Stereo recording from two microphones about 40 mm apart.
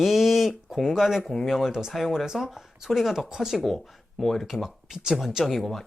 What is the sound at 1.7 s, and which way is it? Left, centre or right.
Speech, centre.